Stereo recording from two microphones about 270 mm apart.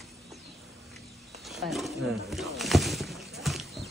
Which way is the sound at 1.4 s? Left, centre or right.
Centre.